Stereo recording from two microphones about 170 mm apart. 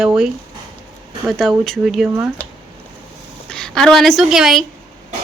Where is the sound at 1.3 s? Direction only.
Centre (ahead or behind).